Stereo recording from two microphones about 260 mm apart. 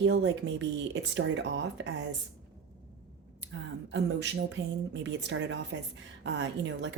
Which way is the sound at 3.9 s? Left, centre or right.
Right.